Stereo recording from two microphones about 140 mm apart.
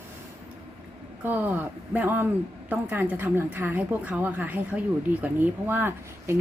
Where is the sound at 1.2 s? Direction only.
15° right (ahead or behind).